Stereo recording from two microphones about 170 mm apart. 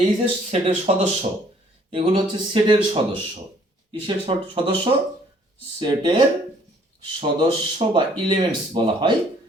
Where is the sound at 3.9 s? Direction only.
30° right (ahead or behind).